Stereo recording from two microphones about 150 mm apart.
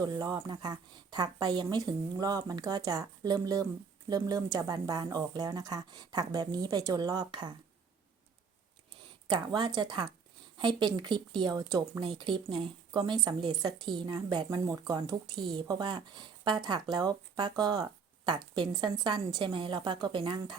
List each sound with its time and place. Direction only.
0.0 s speech: 25° right (ahead or behind)
9.2 s a woman's voice: 30° right (ahead or behind)